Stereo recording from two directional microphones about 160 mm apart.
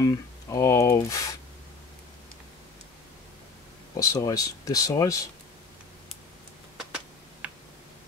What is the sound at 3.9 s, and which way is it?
Speech, 20° left (ahead or behind).